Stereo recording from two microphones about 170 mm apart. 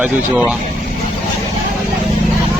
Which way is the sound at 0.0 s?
5° right (ahead or behind).